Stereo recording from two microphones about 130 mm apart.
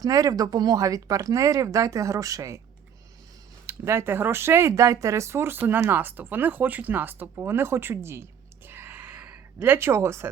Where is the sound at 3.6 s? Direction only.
20° right (ahead or behind).